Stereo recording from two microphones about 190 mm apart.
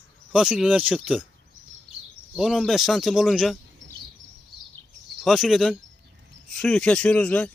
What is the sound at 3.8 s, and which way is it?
Chirp, 70° right (ahead or behind).